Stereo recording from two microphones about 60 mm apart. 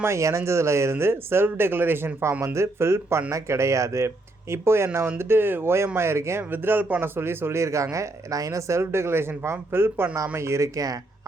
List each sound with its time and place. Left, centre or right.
0.0 s speech: right
2.4 s speech: right
6.5 s speech: right
10.3 s speech: right
10.8 s speech: right